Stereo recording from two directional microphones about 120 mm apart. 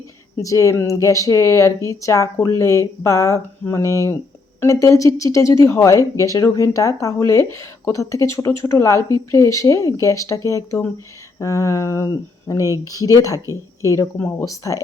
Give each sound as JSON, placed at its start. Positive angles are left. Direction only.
{"t": 0.3, "sound": "speech", "side_deg": 25}